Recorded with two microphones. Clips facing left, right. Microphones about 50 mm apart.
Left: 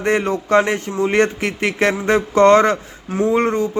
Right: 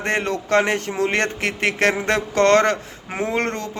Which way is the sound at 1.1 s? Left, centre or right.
Right.